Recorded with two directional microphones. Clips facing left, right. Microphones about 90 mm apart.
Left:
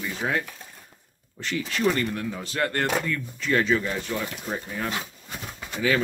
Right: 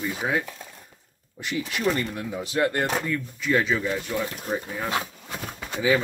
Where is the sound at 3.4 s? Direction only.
5° right (ahead or behind).